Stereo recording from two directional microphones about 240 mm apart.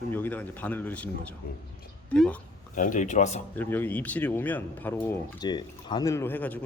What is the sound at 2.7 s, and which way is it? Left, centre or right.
Speech, left.